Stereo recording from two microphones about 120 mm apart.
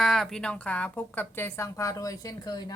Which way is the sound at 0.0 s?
5° left (ahead or behind).